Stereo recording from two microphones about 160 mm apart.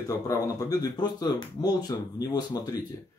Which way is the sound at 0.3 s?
25° left (ahead or behind).